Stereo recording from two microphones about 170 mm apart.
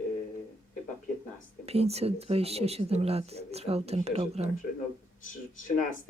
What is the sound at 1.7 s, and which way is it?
Speech, 35° right (ahead or behind).